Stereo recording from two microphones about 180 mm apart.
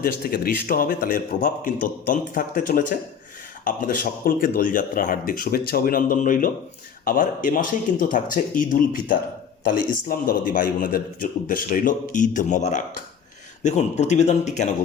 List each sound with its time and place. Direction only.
0.0 s speech: 55° left (ahead or behind)